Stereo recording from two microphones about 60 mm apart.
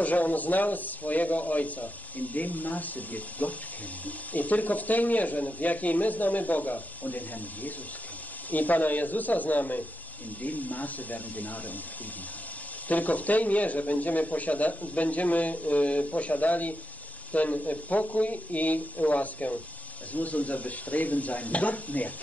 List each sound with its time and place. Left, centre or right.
0.0 s speech: left
12.8 s speech: left